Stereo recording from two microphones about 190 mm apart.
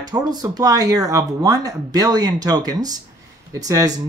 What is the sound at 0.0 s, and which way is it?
Speech, 20° right (ahead or behind).